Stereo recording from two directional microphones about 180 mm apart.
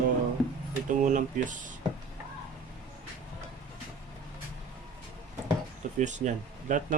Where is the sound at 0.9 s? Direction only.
45° right (ahead or behind).